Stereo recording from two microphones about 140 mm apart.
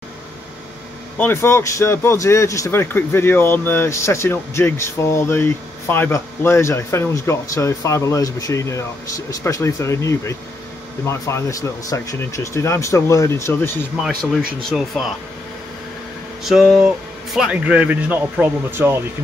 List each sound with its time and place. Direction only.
1.1 s speech: 15° left (ahead or behind)
14.6 s speech: centre (ahead or behind)
16.4 s speech: centre (ahead or behind)